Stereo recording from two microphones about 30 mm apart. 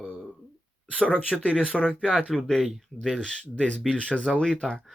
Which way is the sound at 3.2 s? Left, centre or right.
Centre.